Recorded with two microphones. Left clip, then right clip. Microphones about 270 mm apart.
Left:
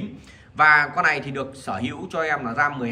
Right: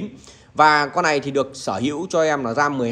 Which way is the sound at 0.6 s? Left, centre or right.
Centre.